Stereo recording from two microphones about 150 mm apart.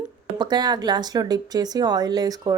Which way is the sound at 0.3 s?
30° right (ahead or behind).